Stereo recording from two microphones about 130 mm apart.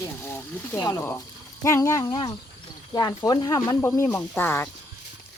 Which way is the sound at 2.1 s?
35° left (ahead or behind).